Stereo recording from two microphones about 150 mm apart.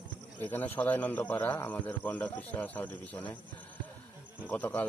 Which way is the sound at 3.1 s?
10° left (ahead or behind).